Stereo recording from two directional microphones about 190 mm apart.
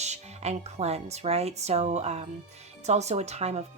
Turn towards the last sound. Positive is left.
turn(degrees=-35)  # may be behind; listen again after turning